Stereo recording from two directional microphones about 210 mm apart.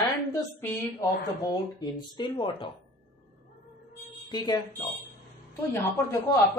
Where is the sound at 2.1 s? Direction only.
25° left (ahead or behind).